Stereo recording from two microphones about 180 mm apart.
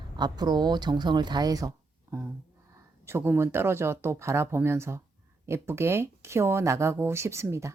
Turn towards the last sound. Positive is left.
turn(degrees=-15)  # may be behind; listen again after turning